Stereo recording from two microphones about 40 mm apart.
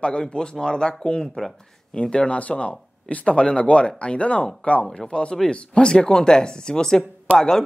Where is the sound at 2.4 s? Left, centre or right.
Left.